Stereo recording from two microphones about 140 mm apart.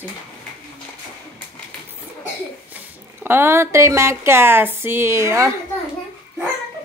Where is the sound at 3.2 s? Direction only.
15° right (ahead or behind).